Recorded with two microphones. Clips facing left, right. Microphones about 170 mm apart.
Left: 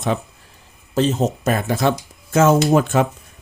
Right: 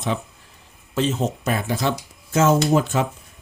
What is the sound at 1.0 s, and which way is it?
Speech, 40° left (ahead or behind).